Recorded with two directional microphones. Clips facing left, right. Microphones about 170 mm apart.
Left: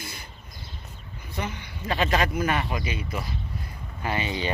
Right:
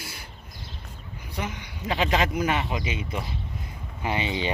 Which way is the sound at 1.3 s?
15° right (ahead or behind).